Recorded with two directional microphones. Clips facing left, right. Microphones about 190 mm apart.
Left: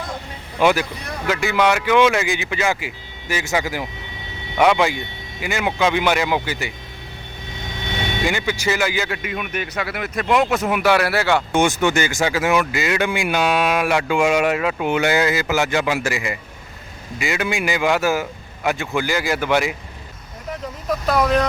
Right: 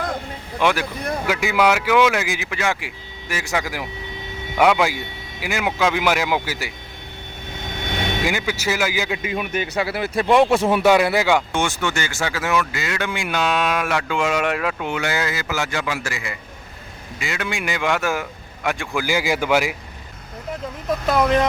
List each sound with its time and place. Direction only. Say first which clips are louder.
0.6 s speech: left 3 dB; 5° left (ahead or behind)
1.3 s speech: left 1 dB; 10° right (ahead or behind)
8.2 s speech: left 4 dB; 5° right (ahead or behind)
9.2 s speech: right 2 dB; 30° right (ahead or behind)
10.9 s speech: right 1 dB; 15° right (ahead or behind)
11.5 s speech: left 5 dB; 15° left (ahead or behind)
14.8 s a man's voice: left 6 dB; 20° left (ahead or behind); by 18.9 s 5° left (ahead or behind)
18.9 s speech: right 3 dB; 10° right (ahead or behind)